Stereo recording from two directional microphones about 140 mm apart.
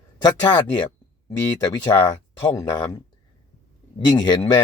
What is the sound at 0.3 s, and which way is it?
Speech, 30° left (ahead or behind).